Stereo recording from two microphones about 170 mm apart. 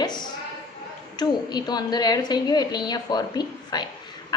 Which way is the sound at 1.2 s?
25° left (ahead or behind).